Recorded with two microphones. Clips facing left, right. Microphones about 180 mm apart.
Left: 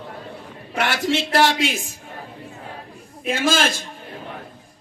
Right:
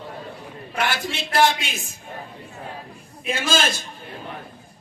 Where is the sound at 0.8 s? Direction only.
80° left.